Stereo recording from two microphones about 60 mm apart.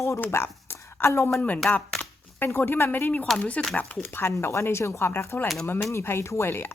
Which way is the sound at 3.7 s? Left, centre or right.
Left.